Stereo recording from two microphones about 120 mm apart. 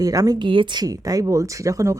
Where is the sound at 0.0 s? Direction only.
30° right (ahead or behind).